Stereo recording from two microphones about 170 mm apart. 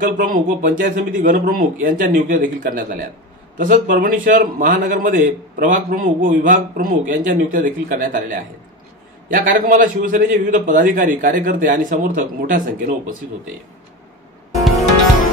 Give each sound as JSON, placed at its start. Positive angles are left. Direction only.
{"t": 0.0, "sound": "a man's voice", "side_deg": -55}